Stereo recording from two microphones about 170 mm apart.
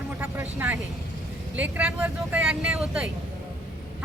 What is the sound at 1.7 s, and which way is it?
Speech, 5° right (ahead or behind).